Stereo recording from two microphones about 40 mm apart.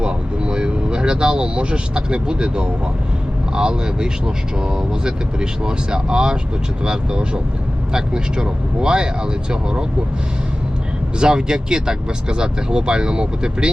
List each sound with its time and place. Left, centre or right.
0.0 s vehicle: right
3.5 s speech: right
11.2 s speech: centre